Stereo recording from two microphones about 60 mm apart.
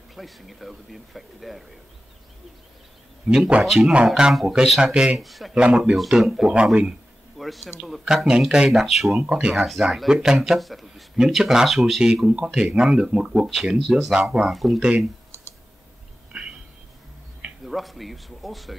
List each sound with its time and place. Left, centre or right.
0.1 s speech: centre
3.3 s a man's voice: centre
3.6 s a man's voice: centre
5.1 s speech: centre
5.5 s a man's voice: centre
7.3 s a man's voice: centre
9.2 s a man's voice: centre
9.6 s a man's voice: centre
14.5 s speech: centre
16.3 s a sound: centre
17.6 s speech: centre